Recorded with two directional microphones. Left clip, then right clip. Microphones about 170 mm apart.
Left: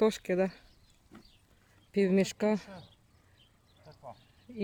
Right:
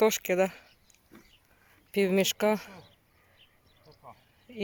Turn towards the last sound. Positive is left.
turn(degrees=0)  # may be behind; listen again after turning